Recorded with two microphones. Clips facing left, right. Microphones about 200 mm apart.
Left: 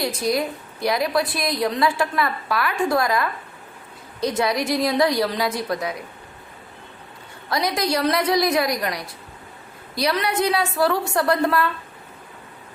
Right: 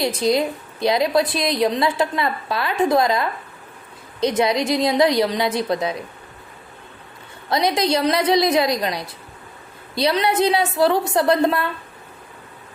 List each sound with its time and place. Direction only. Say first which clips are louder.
0.0 s a woman's voice: right 4 dB; 25° right (ahead or behind)
7.5 s a woman's voice: right 3 dB; 25° right (ahead or behind)